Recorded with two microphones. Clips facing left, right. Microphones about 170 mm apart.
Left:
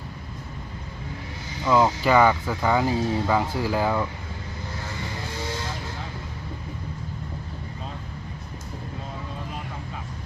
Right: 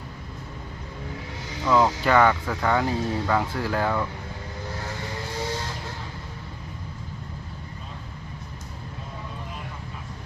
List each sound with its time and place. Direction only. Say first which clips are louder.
1.6 s speech: left 1 dB; 5° left (ahead or behind)